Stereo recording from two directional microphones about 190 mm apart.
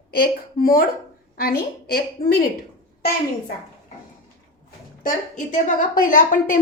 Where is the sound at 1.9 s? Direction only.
50° left (ahead or behind).